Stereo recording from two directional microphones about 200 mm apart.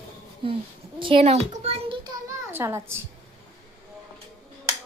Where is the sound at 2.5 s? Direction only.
10° right (ahead or behind).